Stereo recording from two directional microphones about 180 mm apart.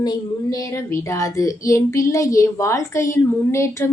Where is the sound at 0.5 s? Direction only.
15° left (ahead or behind).